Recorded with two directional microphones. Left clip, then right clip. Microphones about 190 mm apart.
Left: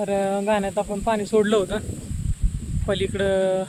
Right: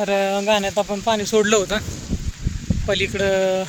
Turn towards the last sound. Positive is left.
turn(degrees=-10)  # may be behind; listen again after turning